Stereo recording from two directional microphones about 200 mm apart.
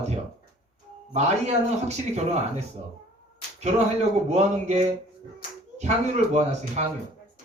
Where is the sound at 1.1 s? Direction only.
35° right (ahead or behind).